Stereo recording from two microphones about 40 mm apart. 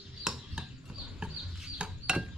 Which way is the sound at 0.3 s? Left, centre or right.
Centre.